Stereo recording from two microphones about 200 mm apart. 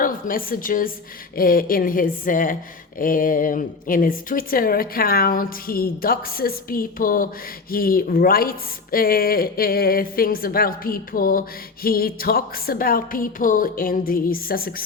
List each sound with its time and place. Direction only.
0.0 s a woman's voice: 45° left (ahead or behind)